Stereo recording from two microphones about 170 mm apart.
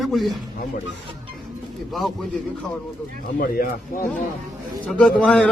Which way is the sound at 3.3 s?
60° left (ahead or behind).